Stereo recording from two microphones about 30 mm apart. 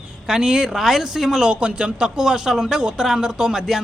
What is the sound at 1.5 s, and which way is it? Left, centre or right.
Speech, right.